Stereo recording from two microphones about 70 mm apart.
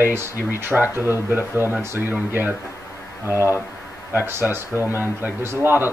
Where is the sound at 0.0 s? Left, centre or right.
Right.